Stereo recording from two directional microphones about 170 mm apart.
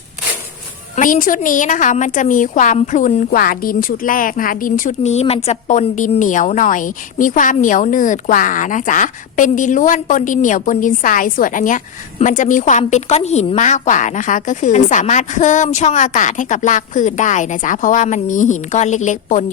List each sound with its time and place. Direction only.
0.9 s speech: 50° left (ahead or behind)
3.3 s speech: 60° left (ahead or behind)